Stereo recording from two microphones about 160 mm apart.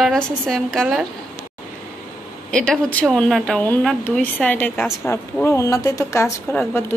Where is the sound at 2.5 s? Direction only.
5° left (ahead or behind).